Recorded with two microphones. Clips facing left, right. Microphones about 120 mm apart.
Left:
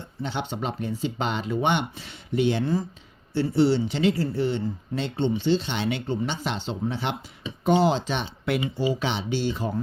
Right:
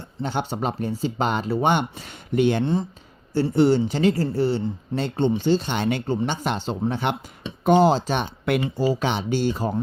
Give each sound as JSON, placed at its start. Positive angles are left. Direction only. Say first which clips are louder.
{"t": 0.0, "sound": "speech", "louder": "right 4 dB", "side_deg": -45}